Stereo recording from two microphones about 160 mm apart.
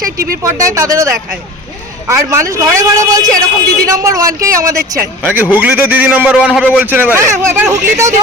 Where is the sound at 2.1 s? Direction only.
15° right (ahead or behind).